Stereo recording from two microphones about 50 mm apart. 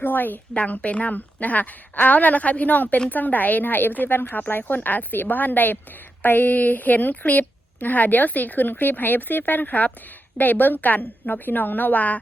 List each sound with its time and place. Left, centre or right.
0.0 s a woman's voice: left
0.5 s a woman's voice: left